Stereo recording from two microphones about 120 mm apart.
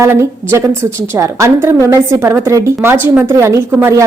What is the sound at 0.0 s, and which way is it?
A woman's voice, 25° right (ahead or behind).